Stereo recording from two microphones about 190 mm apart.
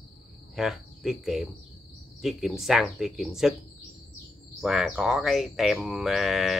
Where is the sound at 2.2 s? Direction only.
Centre (ahead or behind).